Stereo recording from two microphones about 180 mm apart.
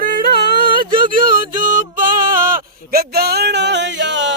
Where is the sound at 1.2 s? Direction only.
45° right (ahead or behind).